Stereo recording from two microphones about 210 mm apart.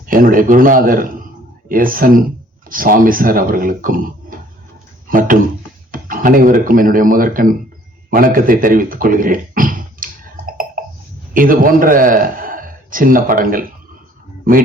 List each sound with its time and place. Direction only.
0.0 s speech: 40° right (ahead or behind)
8.1 s a sound: 40° right (ahead or behind)
11.3 s a man's voice: 40° right (ahead or behind)